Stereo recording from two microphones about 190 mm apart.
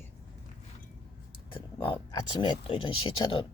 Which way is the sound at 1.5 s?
25° left (ahead or behind).